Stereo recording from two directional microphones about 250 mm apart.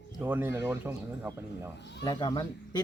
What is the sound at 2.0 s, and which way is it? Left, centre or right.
Speech, centre.